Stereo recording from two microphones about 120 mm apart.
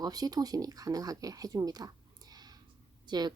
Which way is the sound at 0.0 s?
35° right (ahead or behind).